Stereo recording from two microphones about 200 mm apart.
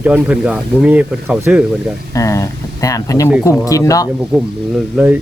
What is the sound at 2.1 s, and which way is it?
Speech, 15° left (ahead or behind).